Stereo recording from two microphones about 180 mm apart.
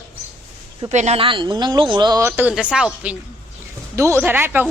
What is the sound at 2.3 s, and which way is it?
Speech, 10° right (ahead or behind).